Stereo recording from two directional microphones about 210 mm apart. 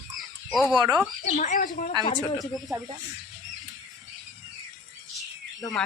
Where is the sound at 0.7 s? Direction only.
20° right (ahead or behind).